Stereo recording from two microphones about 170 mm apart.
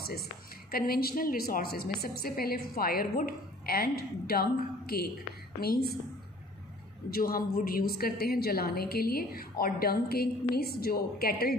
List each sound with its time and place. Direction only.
0.0 s a woman's voice: 65° left (ahead or behind)
7.1 s a woman's voice: 60° left (ahead or behind)